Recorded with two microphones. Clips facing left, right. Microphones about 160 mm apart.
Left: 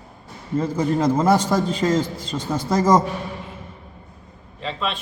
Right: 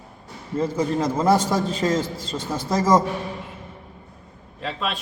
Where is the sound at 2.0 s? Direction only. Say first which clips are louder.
Left 2 dB; 25° right (ahead or behind).